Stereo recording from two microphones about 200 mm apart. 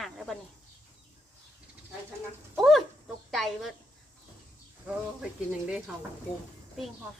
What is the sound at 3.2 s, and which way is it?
Speech, centre (ahead or behind).